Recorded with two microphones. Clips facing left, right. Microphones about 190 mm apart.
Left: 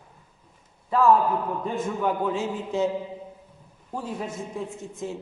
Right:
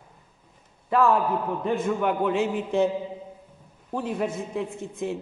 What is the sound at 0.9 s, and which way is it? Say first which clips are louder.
A man's voice: left 1 dB; 65° right (ahead or behind).